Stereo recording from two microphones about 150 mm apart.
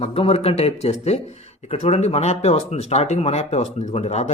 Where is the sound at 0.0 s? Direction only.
40° left (ahead or behind).